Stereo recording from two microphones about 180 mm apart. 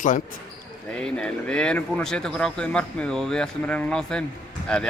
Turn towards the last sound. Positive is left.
turn(degrees=5)  # may be behind; listen again after turning